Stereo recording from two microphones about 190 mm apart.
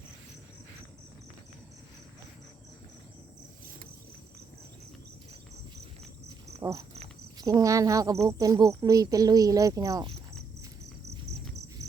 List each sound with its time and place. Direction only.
6.6 s speech: 15° right (ahead or behind)
11.8 s cricket: 15° right (ahead or behind)